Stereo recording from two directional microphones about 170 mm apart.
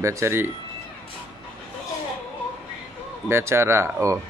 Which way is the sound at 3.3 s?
15° right (ahead or behind).